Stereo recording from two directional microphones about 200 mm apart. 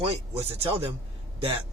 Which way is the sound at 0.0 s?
30° right (ahead or behind).